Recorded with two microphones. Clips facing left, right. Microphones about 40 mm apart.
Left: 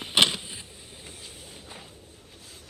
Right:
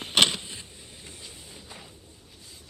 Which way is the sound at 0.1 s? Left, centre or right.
Centre.